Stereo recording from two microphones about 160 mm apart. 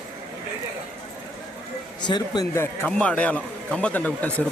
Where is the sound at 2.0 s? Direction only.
25° left (ahead or behind).